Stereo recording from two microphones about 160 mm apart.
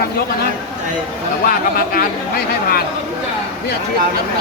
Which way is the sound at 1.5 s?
65° left (ahead or behind).